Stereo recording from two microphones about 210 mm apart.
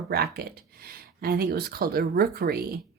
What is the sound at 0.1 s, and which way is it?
Speech, 45° right (ahead or behind).